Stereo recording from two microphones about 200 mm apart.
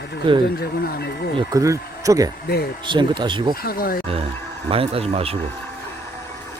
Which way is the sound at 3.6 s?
50° left (ahead or behind).